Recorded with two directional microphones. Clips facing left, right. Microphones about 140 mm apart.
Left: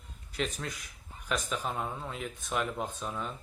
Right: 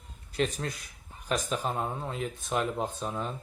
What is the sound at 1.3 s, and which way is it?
Speech, 30° right (ahead or behind).